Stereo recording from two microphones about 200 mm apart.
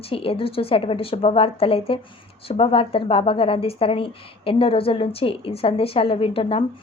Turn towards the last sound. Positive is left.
turn(degrees=30)  # may be behind; listen again after turning